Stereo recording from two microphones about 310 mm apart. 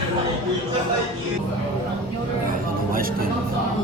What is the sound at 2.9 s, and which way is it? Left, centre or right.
Music, right.